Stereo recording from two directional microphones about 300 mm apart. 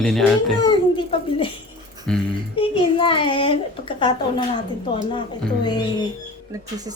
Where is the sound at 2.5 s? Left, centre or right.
Centre.